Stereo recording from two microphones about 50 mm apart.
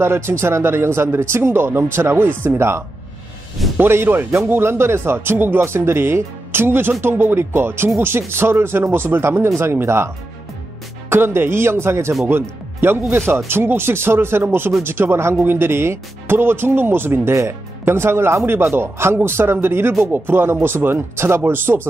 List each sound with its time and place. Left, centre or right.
0.0 s speech: right
3.8 s speech: right
12.3 s speech: right
17.4 s speech: right